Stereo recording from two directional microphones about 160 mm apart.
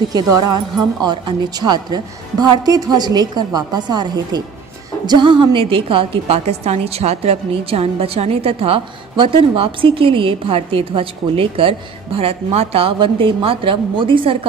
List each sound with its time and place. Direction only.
0.1 s a woman's voice: 25° right (ahead or behind)